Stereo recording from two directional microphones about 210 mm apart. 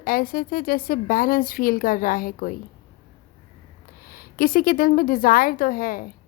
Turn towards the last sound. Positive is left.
turn(degrees=40)  # may be behind; listen again after turning